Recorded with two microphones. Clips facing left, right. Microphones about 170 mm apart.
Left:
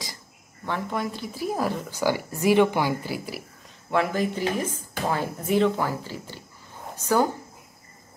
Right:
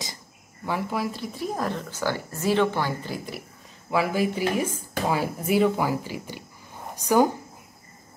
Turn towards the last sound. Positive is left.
turn(degrees=-15)  # may be behind; listen again after turning